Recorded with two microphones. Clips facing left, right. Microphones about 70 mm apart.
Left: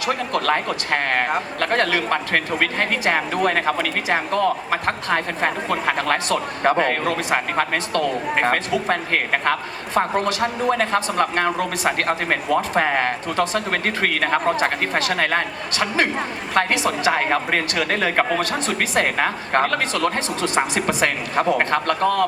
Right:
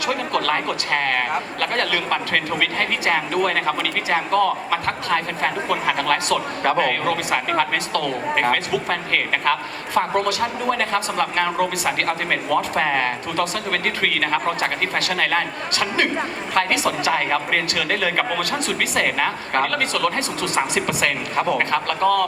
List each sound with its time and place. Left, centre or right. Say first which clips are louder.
0.0 s speech: even; left